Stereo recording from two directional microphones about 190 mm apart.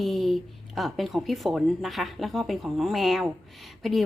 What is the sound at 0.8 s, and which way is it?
A woman's voice, centre (ahead or behind).